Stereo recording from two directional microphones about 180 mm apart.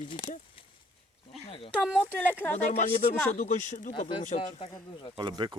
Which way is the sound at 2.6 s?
40° left (ahead or behind).